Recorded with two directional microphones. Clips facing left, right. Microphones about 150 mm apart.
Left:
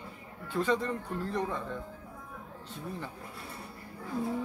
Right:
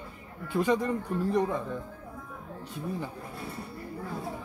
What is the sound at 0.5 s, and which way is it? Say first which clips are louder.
A man's voice: right 3 dB; 15° right (ahead or behind).